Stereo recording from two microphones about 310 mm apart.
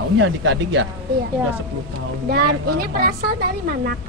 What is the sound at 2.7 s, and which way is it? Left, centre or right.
A woman's voice, right.